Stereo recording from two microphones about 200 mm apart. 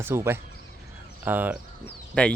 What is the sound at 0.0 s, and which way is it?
Speech, 10° right (ahead or behind).